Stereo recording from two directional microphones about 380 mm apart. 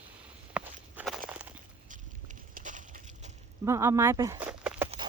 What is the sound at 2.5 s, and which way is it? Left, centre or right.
Crushing, centre.